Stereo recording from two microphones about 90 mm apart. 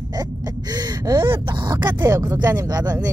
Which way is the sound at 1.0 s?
60° right (ahead or behind).